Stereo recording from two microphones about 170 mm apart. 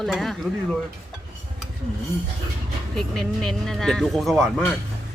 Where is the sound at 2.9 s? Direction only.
5° left (ahead or behind).